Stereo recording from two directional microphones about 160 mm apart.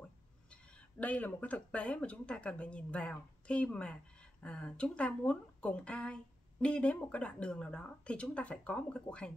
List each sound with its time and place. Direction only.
0.5 s speech: 5° left (ahead or behind)